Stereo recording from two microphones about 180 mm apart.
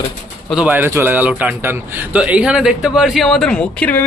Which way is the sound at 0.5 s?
10° right (ahead or behind).